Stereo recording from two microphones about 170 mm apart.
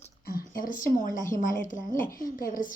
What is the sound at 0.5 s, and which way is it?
A woman's voice, 50° left (ahead or behind).